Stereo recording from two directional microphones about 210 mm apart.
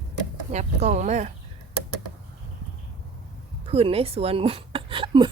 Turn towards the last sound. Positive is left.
turn(degrees=-25)  # may be behind; listen again after turning